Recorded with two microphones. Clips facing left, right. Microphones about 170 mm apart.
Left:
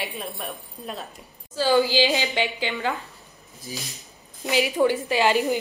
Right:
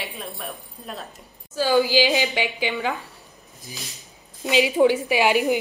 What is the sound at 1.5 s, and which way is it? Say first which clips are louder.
A woman's voice: right 1 dB; 15° right (ahead or behind).